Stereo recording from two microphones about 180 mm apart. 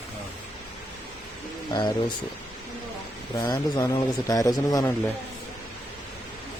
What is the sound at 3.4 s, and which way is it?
Speech, 20° left (ahead or behind).